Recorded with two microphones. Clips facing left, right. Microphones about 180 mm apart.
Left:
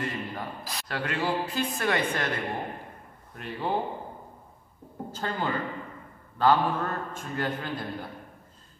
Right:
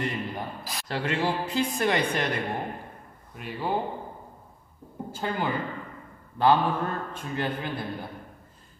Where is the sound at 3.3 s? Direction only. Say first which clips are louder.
Right 1 dB; 5° right (ahead or behind).